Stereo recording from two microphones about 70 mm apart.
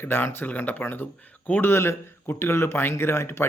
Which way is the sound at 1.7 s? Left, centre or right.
Left.